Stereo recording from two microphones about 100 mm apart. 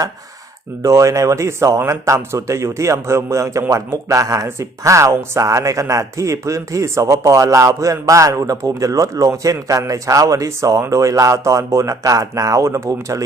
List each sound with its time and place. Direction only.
0.8 s speech: 30° right (ahead or behind)